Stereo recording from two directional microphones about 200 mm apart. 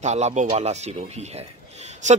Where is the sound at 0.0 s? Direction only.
35° right (ahead or behind).